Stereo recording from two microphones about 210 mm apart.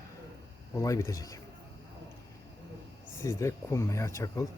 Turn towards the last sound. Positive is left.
turn(degrees=15)  # may be behind; listen again after turning